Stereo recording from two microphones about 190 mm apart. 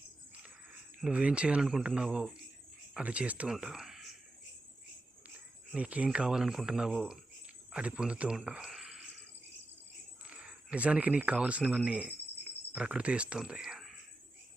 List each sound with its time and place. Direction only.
1.0 s speech: 5° right (ahead or behind)
5.7 s speech: 5° right (ahead or behind)
10.2 s speech: 5° right (ahead or behind)